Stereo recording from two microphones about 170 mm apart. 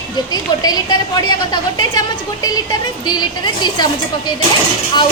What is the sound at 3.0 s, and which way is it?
Speech, 25° left (ahead or behind).